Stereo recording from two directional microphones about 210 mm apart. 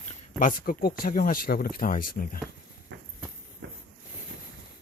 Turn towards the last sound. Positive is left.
turn(degrees=-60)  # may be behind; listen again after turning